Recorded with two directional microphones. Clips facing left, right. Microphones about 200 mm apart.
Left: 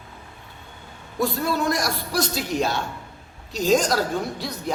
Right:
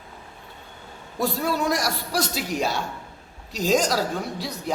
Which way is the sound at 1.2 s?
10° right (ahead or behind).